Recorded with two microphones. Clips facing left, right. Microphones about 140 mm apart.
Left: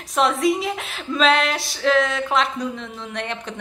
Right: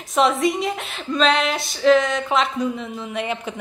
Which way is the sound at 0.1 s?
Centre (ahead or behind).